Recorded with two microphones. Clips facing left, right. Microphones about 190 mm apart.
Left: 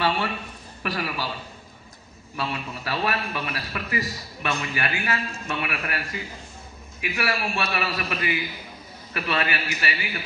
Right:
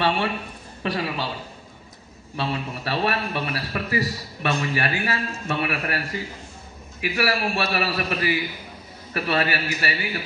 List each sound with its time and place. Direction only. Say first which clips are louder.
0.8 s a man's voice: right 3 dB; 25° right (ahead or behind)
2.3 s a man's voice: right 3 dB; 30° right (ahead or behind)